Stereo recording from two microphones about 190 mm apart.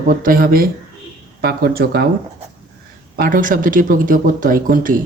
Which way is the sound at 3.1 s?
45° right (ahead or behind).